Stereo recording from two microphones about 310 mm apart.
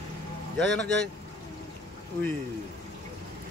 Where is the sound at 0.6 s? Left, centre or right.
Centre.